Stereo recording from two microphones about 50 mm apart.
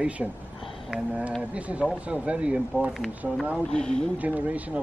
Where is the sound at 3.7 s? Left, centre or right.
Centre.